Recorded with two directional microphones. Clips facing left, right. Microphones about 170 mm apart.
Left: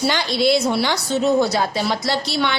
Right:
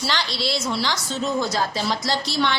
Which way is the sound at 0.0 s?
50° left (ahead or behind).